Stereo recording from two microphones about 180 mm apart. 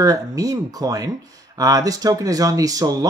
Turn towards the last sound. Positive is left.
turn(degrees=-20)  # may be behind; listen again after turning